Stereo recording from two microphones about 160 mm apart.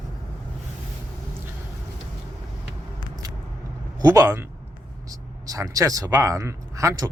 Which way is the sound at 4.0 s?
15° right (ahead or behind).